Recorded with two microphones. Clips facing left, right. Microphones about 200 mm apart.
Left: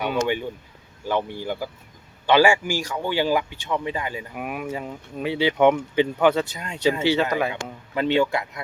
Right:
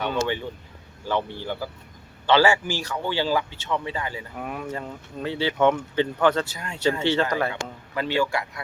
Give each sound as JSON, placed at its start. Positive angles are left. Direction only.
{"t": 0.0, "sound": "speech", "side_deg": 15}
{"t": 7.0, "sound": "speech", "side_deg": 10}